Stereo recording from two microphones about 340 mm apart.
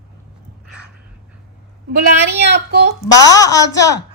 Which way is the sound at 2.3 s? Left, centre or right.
Right.